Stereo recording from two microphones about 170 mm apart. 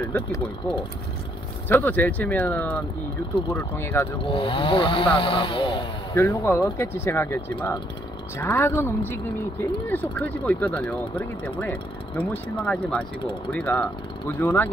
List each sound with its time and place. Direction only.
1.7 s speech: 10° left (ahead or behind)
4.3 s speech: 30° left (ahead or behind)
6.1 s speech: 15° left (ahead or behind)